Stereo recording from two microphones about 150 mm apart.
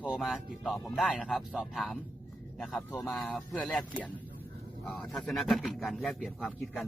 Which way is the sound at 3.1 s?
Centre (ahead or behind).